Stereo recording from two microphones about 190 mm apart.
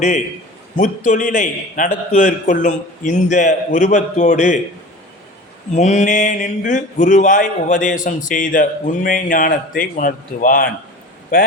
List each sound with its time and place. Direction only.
0.8 s a man's voice: 40° left (ahead or behind)
5.7 s a man's voice: 35° left (ahead or behind)